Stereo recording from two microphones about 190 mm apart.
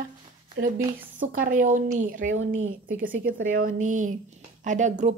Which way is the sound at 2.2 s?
85° right.